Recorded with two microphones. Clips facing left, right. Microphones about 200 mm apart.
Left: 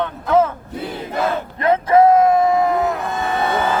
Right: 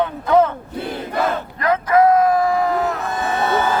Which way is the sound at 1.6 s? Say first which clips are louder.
Left 2 dB; 25° left (ahead or behind).